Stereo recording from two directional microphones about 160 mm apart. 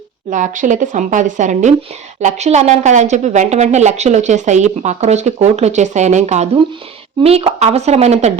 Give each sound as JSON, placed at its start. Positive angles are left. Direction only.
{"t": 0.3, "sound": "a woman's voice", "side_deg": -50}